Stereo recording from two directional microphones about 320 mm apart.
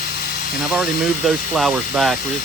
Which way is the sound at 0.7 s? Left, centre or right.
Centre.